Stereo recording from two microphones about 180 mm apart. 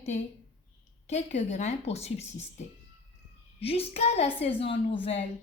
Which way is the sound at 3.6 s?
35° left (ahead or behind).